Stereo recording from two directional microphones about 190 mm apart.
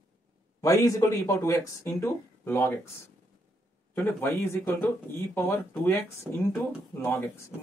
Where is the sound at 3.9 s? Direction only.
10° left (ahead or behind).